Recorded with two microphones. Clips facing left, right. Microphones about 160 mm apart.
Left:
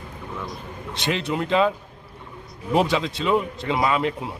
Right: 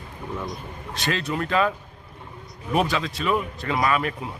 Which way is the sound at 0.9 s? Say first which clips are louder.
Left 2 dB; 20° left (ahead or behind).